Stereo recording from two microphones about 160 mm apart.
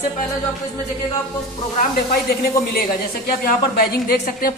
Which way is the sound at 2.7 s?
65° left (ahead or behind).